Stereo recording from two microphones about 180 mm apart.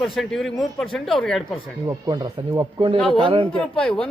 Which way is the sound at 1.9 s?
20° right (ahead or behind).